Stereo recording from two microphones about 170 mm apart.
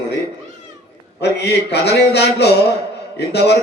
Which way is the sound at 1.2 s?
80° left.